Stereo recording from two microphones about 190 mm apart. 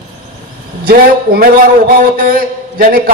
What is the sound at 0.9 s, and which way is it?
A man's voice, 55° right (ahead or behind).